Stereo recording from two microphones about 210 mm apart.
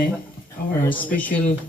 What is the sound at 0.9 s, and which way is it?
Speech, 5° left (ahead or behind).